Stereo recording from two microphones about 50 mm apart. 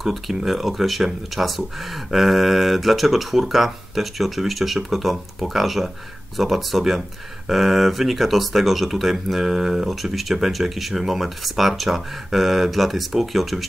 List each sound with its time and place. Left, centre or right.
0.0 s speech: centre